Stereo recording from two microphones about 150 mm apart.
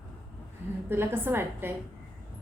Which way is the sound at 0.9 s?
15° right (ahead or behind).